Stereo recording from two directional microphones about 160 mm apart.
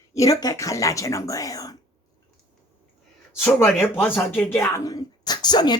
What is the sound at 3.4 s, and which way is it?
A woman's voice, 10° left (ahead or behind).